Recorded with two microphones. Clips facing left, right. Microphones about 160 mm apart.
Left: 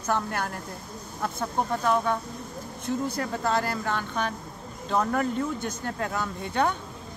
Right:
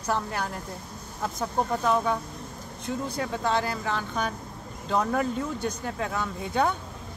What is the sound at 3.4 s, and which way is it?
Speech, centre (ahead or behind).